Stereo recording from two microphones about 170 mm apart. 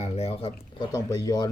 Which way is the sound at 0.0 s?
40° left (ahead or behind).